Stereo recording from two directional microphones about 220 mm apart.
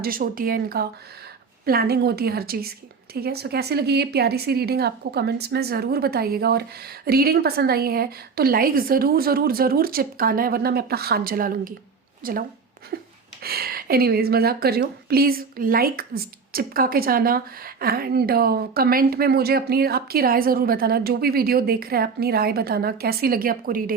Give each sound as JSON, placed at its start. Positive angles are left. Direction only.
{"t": 0.0, "sound": "speech", "side_deg": -40}